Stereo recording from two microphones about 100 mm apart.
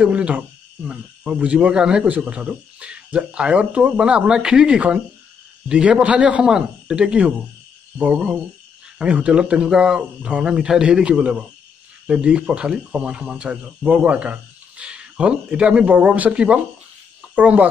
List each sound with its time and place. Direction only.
0.0 s speech: 10° right (ahead or behind)